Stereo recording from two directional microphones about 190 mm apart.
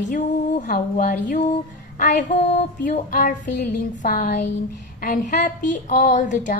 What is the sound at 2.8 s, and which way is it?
A woman's voice, 45° left (ahead or behind).